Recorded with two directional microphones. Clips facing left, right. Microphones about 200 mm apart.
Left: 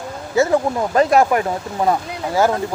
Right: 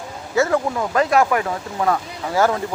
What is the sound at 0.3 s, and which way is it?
Speech, 25° left (ahead or behind).